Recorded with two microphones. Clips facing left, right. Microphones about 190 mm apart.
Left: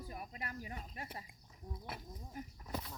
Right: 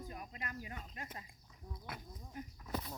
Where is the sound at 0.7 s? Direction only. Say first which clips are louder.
Left 1 dB; 35° left (ahead or behind).